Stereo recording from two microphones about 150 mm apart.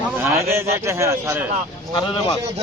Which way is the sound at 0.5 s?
20° right (ahead or behind).